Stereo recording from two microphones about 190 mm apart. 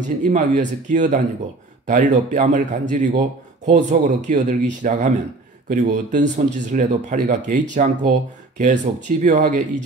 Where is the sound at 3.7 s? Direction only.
40° right (ahead or behind).